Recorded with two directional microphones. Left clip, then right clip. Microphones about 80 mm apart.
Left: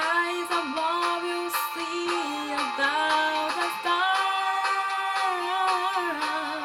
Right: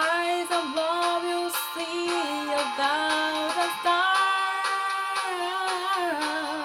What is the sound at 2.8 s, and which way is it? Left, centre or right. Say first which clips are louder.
Music: left 3 dB; right.